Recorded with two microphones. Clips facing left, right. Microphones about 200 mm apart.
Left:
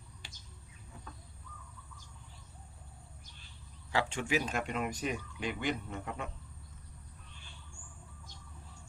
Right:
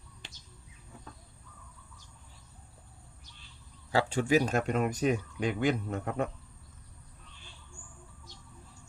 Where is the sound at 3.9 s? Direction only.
35° right (ahead or behind).